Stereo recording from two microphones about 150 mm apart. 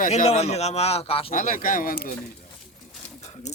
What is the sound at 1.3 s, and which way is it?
Speech, 65° left (ahead or behind).